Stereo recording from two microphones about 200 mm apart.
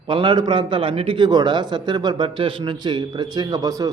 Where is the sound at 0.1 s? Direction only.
25° right (ahead or behind).